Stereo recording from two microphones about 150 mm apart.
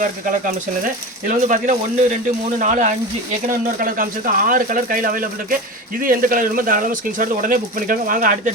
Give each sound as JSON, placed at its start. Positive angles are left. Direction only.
{"t": 1.3, "sound": "speech", "side_deg": -55}